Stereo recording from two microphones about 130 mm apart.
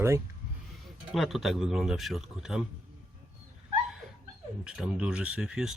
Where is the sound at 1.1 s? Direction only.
Centre (ahead or behind).